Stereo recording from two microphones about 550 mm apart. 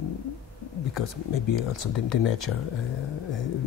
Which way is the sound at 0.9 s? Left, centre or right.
Left.